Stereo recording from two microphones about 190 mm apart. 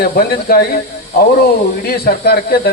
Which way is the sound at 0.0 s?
55° left (ahead or behind).